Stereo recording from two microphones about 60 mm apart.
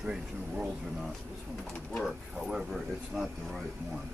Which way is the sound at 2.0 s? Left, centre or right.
Centre.